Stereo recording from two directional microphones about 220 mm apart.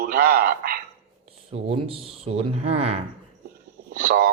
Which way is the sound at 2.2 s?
25° right (ahead or behind).